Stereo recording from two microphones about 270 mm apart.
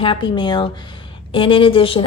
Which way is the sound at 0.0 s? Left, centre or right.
Centre.